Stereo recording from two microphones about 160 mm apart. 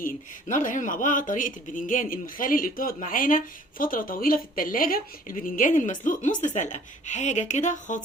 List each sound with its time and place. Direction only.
0.0 s speech: 55° left (ahead or behind)